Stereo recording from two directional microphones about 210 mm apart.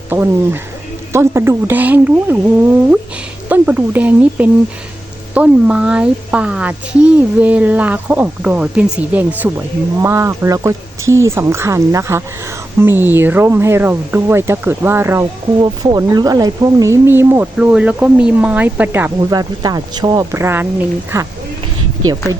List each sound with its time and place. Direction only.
0.1 s speech: 10° right (ahead or behind)
3.5 s speech: 10° right (ahead or behind)